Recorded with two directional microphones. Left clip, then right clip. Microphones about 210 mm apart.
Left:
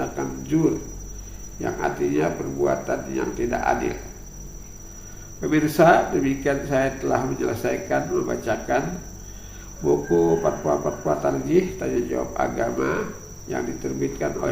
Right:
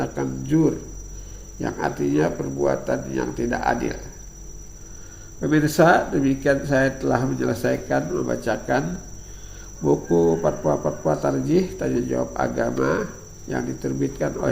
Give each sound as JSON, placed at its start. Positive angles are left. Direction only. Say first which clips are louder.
{"t": 0.0, "sound": "speech", "louder": "right 1 dB", "side_deg": -45}
{"t": 1.6, "sound": "speech", "louder": "even", "side_deg": -45}
{"t": 5.4, "sound": "speech", "louder": "even", "side_deg": -40}
{"t": 9.8, "sound": "speech", "louder": "right 1 dB", "side_deg": -45}
{"t": 14.2, "sound": "speech", "louder": "right 1 dB", "side_deg": -40}